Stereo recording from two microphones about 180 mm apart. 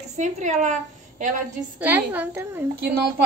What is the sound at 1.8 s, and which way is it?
Speech, 10° right (ahead or behind).